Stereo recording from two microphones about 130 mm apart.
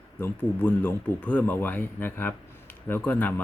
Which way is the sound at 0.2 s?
10° left (ahead or behind).